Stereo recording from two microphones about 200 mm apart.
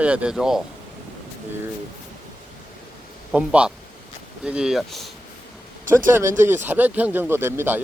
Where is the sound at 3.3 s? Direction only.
5° right (ahead or behind).